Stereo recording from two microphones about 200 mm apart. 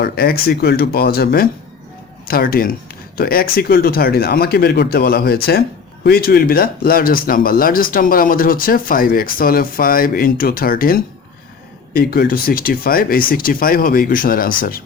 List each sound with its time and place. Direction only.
0.0 s speech: 50° left (ahead or behind)